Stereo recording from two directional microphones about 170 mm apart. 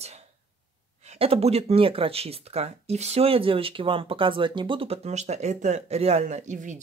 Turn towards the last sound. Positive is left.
turn(degrees=-45)  # may be behind; listen again after turning